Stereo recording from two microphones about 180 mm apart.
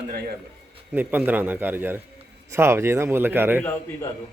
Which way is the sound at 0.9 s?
10° right (ahead or behind).